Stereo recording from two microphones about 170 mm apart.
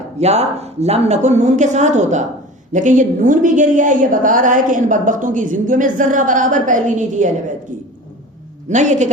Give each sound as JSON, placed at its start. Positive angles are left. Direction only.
{"t": 0.2, "sound": "a woman's voice", "side_deg": -40}
{"t": 8.7, "sound": "a woman's voice", "side_deg": -45}